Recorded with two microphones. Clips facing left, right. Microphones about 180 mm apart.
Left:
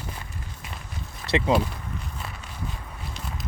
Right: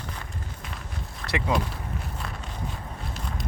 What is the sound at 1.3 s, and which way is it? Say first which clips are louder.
Speech: left 5 dB; 25° left (ahead or behind).